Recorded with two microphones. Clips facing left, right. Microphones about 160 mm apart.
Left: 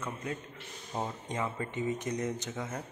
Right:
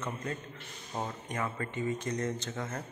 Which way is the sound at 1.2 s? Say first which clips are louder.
Left 1 dB; 20° left (ahead or behind).